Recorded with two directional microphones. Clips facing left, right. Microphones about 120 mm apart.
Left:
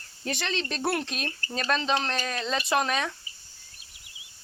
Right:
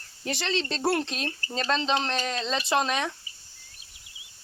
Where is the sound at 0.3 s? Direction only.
25° right (ahead or behind).